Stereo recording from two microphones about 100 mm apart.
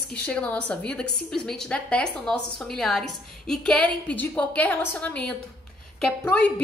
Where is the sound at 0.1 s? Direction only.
15° left (ahead or behind).